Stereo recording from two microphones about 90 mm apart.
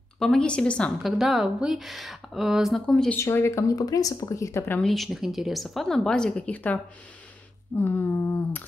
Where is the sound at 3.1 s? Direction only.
30° left (ahead or behind).